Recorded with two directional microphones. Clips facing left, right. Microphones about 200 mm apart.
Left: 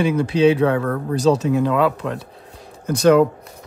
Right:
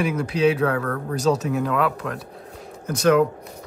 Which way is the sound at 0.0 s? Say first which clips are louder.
Left 4 dB; 30° left (ahead or behind).